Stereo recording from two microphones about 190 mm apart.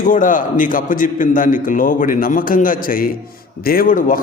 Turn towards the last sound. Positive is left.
turn(degrees=45)  # may be behind; listen again after turning